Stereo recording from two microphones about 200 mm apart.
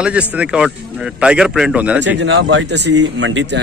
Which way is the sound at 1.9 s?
60° right (ahead or behind).